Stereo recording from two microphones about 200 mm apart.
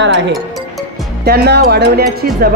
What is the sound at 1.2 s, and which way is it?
Speech, 55° right (ahead or behind).